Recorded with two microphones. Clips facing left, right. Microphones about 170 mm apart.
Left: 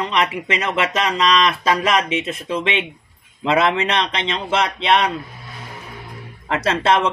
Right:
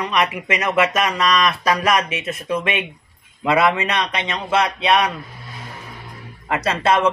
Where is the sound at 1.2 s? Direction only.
25° left (ahead or behind).